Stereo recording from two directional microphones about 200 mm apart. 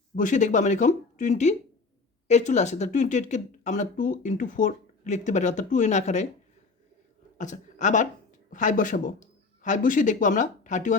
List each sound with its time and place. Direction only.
0.2 s speech: 40° left (ahead or behind)
7.3 s speech: 40° left (ahead or behind)